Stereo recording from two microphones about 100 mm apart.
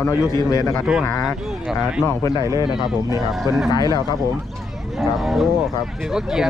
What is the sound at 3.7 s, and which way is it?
Speech, 40° left (ahead or behind).